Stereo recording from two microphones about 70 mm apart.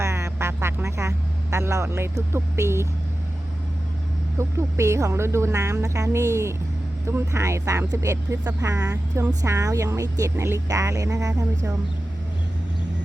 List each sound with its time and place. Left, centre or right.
0.0 s vehicle: right
4.4 s speech: right
10.7 s speech: right